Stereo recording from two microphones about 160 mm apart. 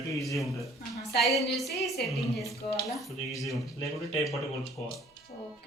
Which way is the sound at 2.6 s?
35° left (ahead or behind).